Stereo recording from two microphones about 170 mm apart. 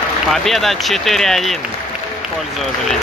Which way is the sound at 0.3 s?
Centre (ahead or behind).